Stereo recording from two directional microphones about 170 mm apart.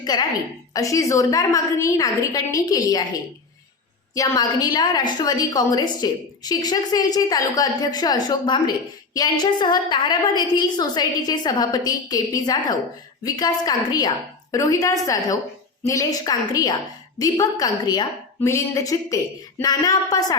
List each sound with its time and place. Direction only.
0.0 s a woman's voice: 25° left (ahead or behind)
4.1 s a woman's voice: 20° left (ahead or behind)